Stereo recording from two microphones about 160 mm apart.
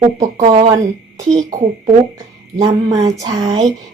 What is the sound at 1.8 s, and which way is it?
Speech, 20° right (ahead or behind).